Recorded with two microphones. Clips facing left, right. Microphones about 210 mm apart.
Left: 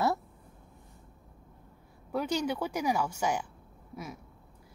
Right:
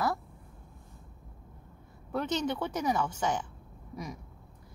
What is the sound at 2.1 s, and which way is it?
A woman's voice, 10° left (ahead or behind).